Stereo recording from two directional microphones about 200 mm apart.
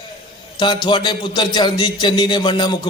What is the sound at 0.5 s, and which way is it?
A man's voice, 20° left (ahead or behind).